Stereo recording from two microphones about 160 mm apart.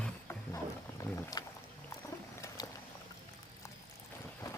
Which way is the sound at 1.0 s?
20° left (ahead or behind).